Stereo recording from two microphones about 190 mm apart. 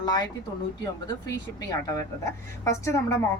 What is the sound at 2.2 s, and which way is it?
Speech, 15° left (ahead or behind).